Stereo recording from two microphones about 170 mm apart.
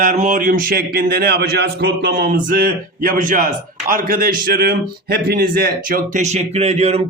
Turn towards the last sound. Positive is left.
turn(degrees=-40)  # may be behind; listen again after turning